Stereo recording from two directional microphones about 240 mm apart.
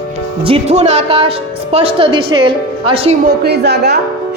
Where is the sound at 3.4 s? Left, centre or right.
Right.